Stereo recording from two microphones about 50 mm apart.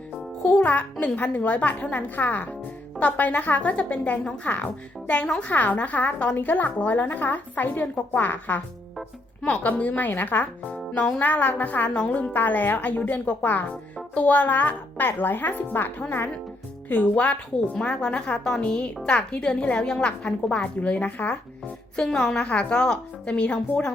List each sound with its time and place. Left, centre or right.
0.4 s a woman's voice: left
10.1 s a woman's voice: left
12.3 s a woman's voice: left
16.9 s a woman's voice: left
21.9 s a woman's voice: centre